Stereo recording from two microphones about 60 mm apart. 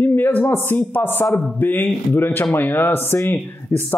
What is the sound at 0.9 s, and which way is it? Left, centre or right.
Speech, left.